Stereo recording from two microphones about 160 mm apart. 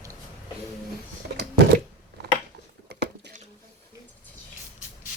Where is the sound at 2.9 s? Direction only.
90° right.